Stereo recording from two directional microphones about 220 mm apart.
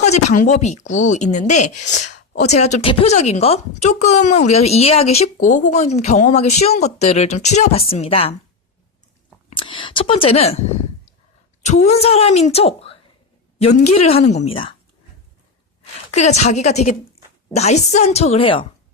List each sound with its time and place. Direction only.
0.0 s speech: 30° left (ahead or behind)
9.6 s speech: 20° left (ahead or behind)
11.6 s speech: 30° left (ahead or behind)
16.1 s speech: 30° left (ahead or behind)